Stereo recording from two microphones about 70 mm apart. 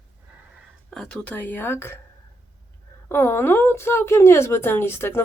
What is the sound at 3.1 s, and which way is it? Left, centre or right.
A woman's voice, left.